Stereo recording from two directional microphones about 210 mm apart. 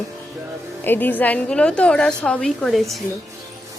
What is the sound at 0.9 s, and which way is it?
A woman's voice, 10° left (ahead or behind).